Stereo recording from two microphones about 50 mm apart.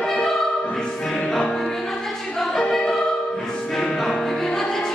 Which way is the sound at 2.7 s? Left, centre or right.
Centre.